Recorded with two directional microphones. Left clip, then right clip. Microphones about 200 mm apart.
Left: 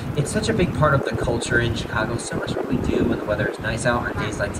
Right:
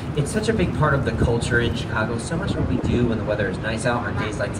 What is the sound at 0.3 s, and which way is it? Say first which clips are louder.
Speech: even; 25° left (ahead or behind).